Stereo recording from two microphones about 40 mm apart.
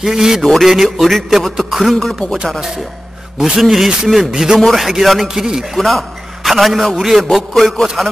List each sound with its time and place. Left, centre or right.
0.0 s a man's voice: centre
2.0 s speech: centre
3.3 s a man's voice: centre
4.6 s a man's voice: centre
5.8 s a man's voice: centre